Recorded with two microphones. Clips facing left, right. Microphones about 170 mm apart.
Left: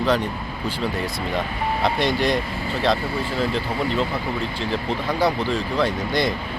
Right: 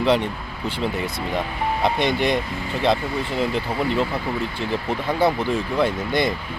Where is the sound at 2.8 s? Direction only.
20° right (ahead or behind).